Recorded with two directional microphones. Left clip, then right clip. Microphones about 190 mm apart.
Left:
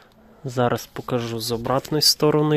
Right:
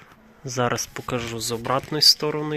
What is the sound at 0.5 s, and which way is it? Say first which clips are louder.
Speech: left 2 dB; 30° left (ahead or behind).